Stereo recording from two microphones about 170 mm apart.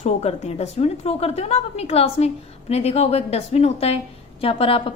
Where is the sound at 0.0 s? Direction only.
40° left (ahead or behind).